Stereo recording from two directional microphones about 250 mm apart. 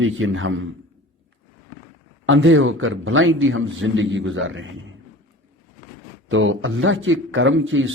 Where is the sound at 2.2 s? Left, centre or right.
Right.